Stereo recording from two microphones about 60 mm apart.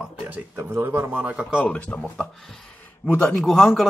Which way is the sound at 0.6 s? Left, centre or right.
Right.